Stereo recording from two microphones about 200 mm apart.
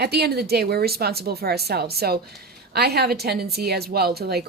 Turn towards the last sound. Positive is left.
turn(degrees=-55)  # may be behind; listen again after turning